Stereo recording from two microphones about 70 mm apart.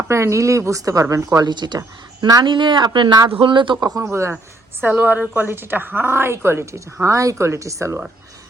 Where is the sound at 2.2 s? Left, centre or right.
Right.